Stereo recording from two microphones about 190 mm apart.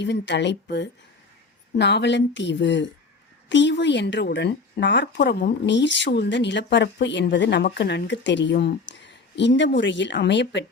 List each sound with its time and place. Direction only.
0.0 s speech: 65° left (ahead or behind)